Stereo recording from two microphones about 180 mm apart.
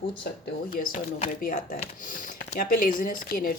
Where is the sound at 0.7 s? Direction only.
50° left (ahead or behind).